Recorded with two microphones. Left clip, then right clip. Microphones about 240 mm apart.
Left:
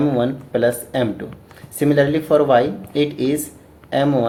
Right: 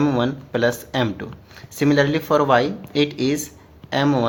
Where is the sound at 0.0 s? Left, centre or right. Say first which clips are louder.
Left 2 dB; right.